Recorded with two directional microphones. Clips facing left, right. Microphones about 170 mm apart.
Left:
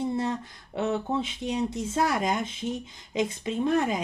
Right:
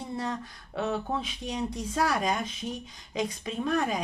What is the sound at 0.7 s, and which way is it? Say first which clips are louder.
Speech: left 3 dB; 25° left (ahead or behind).